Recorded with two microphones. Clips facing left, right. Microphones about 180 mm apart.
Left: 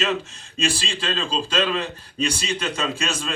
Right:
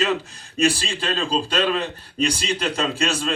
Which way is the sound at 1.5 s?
35° right (ahead or behind).